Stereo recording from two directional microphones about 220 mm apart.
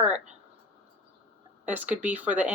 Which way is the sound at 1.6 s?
5° right (ahead or behind).